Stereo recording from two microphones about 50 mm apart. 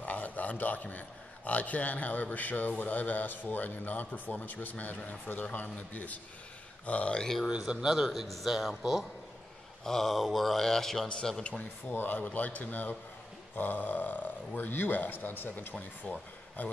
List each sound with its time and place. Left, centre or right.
0.0 s a man's voice: left
7.5 s a man's voice: centre
9.8 s a man's voice: centre
11.9 s a man's voice: left
16.0 s a man's voice: left